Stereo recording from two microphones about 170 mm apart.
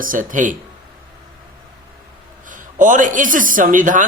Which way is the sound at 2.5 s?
50° right (ahead or behind).